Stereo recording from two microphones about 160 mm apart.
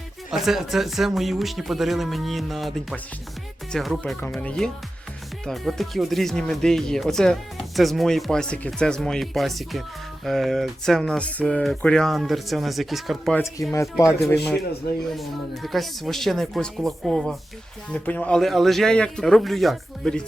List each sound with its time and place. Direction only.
0.3 s speech: centre (ahead or behind)
13.3 s speech: 15° left (ahead or behind)
15.0 s speech: centre (ahead or behind)